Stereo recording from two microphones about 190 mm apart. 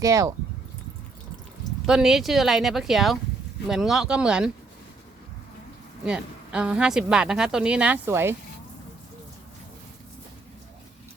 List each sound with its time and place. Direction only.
0.0 s speech: 15° right (ahead or behind)
1.9 s speech: 5° right (ahead or behind)
6.1 s speech: 5° right (ahead or behind)